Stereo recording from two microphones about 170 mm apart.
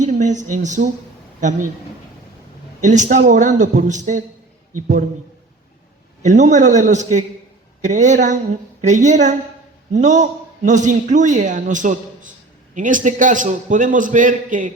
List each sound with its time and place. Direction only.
0.0 s a man's voice: 45° right (ahead or behind)
2.8 s a man's voice: 45° right (ahead or behind)
6.2 s a man's voice: 45° right (ahead or behind)